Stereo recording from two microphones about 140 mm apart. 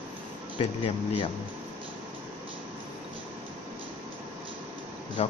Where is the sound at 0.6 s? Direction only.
45° left (ahead or behind).